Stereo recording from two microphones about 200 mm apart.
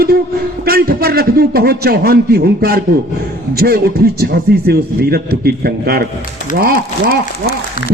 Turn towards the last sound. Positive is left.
turn(degrees=-45)  # may be behind; listen again after turning